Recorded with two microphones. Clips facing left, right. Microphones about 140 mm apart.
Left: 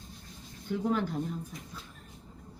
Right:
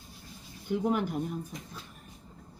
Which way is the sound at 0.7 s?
15° right (ahead or behind).